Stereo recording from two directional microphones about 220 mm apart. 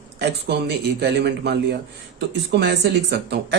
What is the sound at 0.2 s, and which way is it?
Speech, 50° right (ahead or behind).